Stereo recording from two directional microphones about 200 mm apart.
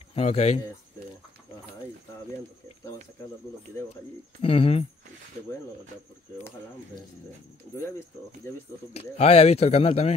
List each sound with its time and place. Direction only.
0.1 s speech: 30° left (ahead or behind)
4.4 s speech: 30° left (ahead or behind)
5.5 s speech: 15° left (ahead or behind)
8.4 s speech: 15° left (ahead or behind)
8.9 s speech: 30° left (ahead or behind)